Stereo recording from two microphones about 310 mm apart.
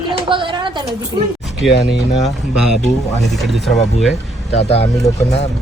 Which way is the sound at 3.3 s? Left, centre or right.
Centre.